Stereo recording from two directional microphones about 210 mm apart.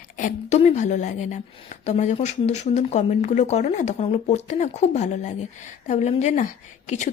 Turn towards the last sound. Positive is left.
turn(degrees=35)  # may be behind; listen again after turning